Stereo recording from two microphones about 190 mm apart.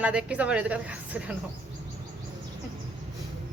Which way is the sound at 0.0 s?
5° right (ahead or behind).